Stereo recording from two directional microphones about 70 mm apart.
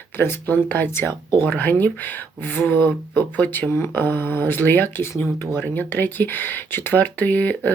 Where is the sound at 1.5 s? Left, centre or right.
Left.